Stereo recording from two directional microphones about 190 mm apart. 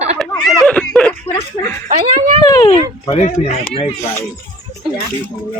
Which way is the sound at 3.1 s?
35° left (ahead or behind).